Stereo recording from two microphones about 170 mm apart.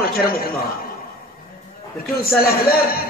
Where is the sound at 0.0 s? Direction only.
60° left (ahead or behind).